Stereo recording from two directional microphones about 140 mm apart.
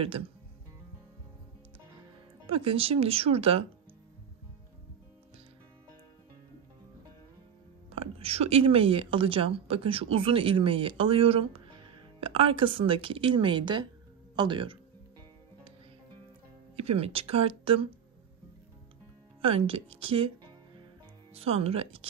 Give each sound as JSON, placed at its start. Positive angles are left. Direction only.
{"t": 0.0, "sound": "a woman's voice", "side_deg": -40}
{"t": 2.4, "sound": "speech", "side_deg": -40}
{"t": 7.9, "sound": "a woman's voice", "side_deg": -45}
{"t": 16.7, "sound": "speech", "side_deg": -45}
{"t": 19.4, "sound": "a woman's voice", "side_deg": -45}